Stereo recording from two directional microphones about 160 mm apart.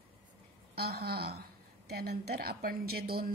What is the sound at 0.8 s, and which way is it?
A woman's voice, 80° right.